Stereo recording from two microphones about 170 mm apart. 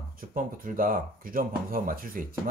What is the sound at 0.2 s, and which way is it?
Speech, 55° right (ahead or behind).